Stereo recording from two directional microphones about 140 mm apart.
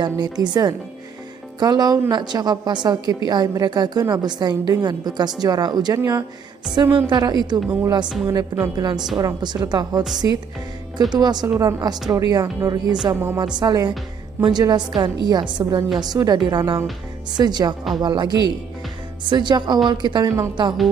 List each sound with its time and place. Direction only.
0.0 s a woman's voice: 30° right (ahead or behind)
13.6 s a woman's voice: 30° right (ahead or behind)